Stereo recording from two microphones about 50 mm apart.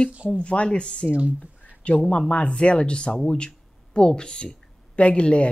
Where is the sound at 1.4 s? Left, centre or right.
Left.